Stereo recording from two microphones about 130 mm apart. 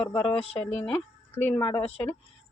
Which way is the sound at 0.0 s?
10° left (ahead or behind).